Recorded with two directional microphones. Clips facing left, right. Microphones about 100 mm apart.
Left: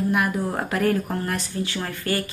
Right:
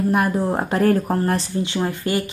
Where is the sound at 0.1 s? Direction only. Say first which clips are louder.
Right 4 dB; 30° right (ahead or behind).